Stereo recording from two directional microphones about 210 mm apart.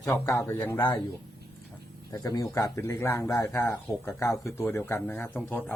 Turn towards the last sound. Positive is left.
turn(degrees=5)  # may be behind; listen again after turning